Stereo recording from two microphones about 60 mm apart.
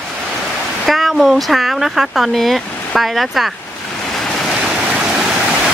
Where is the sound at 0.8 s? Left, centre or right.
Centre.